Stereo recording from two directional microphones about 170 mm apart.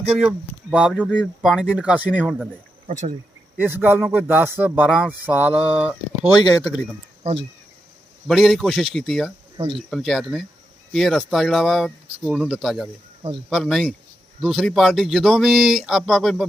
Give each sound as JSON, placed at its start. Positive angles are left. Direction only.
{"t": 0.2, "sound": "speech", "side_deg": -5}
{"t": 2.8, "sound": "cricket", "side_deg": -45}
{"t": 3.6, "sound": "speech", "side_deg": -10}
{"t": 8.3, "sound": "speech", "side_deg": 0}